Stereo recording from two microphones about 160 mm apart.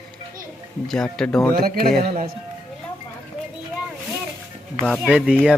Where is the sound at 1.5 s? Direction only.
70° right (ahead or behind).